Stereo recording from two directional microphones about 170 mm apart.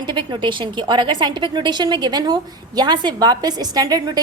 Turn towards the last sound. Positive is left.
turn(degrees=-20)  # may be behind; listen again after turning